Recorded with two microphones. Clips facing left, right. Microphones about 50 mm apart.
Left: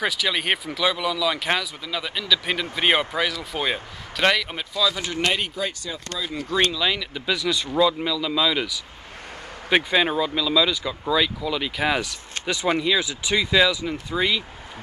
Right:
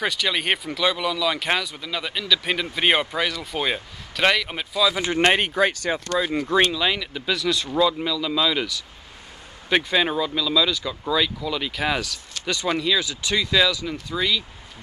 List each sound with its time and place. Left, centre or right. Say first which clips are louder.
0.0 s speech: even; centre
4.9 s speech: right 5 dB; right
6.0 s speech: right 5 dB; right
6.5 s speech: right 1 dB; centre; by 14.4 s left